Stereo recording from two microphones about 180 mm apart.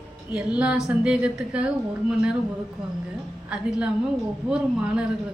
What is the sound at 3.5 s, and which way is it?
A woman's voice, 5° right (ahead or behind).